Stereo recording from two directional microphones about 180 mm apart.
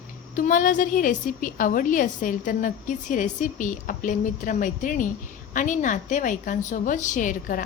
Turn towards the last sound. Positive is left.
turn(degrees=45)  # may be behind; listen again after turning